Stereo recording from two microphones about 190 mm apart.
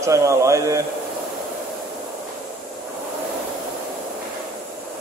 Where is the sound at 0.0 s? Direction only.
15° right (ahead or behind).